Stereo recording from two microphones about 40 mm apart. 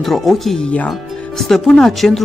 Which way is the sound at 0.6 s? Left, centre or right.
Left.